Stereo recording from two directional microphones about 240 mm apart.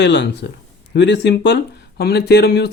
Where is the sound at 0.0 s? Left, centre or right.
Left.